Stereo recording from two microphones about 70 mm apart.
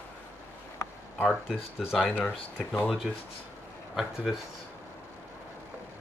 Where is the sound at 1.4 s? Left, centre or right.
Centre.